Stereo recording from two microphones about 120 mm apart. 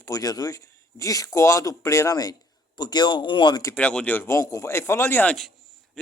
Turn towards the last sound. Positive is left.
turn(degrees=15)  # may be behind; listen again after turning